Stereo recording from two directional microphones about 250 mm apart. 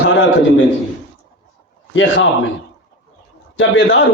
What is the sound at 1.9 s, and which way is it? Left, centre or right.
Speech, left.